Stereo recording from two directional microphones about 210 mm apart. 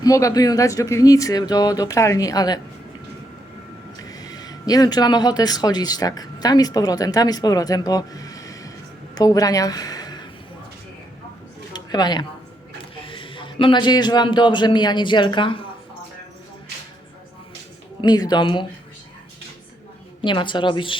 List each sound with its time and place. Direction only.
0.0 s speech: 15° left (ahead or behind)
4.0 s a woman's voice: 20° left (ahead or behind)
11.7 s a sound: 20° left (ahead or behind)
13.1 s a man's voice: 25° left (ahead or behind)
18.0 s a woman's voice: 20° left (ahead or behind)
20.2 s a woman's voice: 20° left (ahead or behind)